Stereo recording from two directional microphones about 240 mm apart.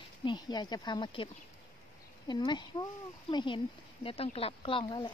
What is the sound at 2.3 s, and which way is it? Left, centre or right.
Speech, centre.